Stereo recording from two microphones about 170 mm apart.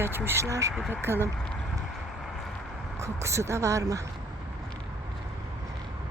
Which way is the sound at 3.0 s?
15° right (ahead or behind).